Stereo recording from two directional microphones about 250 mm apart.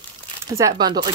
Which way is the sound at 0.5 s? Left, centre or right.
Centre.